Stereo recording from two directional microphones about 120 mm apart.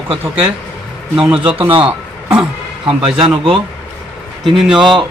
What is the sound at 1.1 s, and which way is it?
Speech, 5° right (ahead or behind).